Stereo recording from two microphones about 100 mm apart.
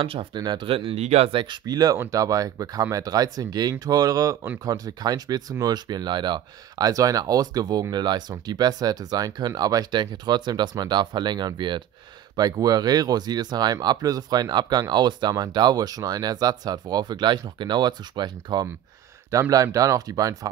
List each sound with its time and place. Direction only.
0.0 s speech: 65° right (ahead or behind)
0.4 s speech: 50° right (ahead or behind)
1.7 s speech: 40° right (ahead or behind)
12.4 s speech: 40° right (ahead or behind)
19.5 s speech: 35° right (ahead or behind)